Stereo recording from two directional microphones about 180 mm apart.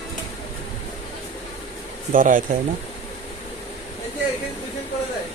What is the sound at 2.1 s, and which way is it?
Speech, 50° right (ahead or behind).